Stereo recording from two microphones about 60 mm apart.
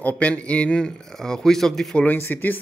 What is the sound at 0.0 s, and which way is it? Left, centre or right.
Speech, left.